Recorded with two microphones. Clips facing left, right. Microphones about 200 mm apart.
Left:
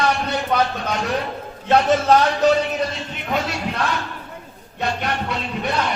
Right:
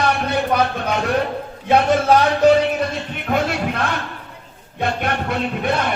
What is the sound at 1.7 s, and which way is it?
Speech, 10° right (ahead or behind).